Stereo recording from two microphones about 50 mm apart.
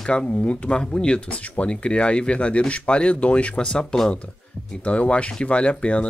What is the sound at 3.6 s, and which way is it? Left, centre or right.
Speech, centre.